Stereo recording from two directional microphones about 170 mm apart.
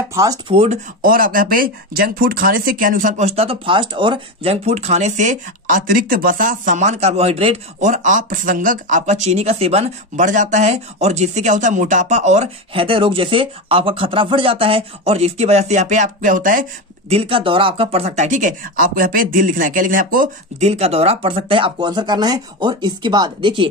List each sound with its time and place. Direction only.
0.1 s speech: 20° right (ahead or behind)
0.5 s speech: 35° right (ahead or behind)
1.0 s speech: 55° right (ahead or behind)
17.1 s speech: 35° right (ahead or behind); by 20.6 s 55° right (ahead or behind)
20.6 s speech: 40° right (ahead or behind)